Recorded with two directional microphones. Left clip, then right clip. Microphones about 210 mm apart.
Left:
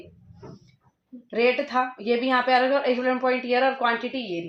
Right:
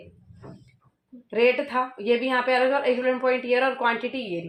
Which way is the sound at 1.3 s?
25° right (ahead or behind).